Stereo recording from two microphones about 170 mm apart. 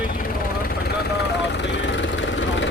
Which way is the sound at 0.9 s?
80° left.